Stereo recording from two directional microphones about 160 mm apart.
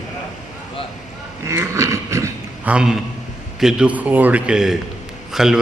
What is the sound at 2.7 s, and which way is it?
A man's voice, 5° right (ahead or behind).